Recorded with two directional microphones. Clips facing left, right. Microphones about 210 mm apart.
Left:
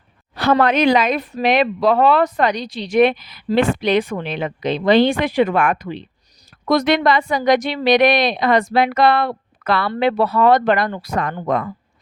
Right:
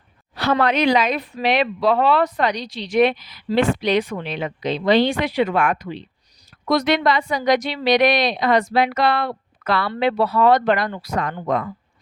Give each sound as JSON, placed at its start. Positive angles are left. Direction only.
{"t": 0.3, "sound": "speech", "side_deg": 50}